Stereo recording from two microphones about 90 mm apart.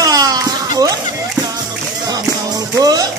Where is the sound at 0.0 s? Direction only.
45° right (ahead or behind).